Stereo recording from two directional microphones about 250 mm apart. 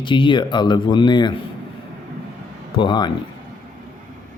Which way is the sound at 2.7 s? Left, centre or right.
Centre.